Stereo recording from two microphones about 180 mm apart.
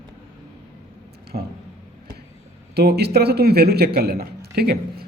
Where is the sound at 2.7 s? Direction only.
65° right (ahead or behind).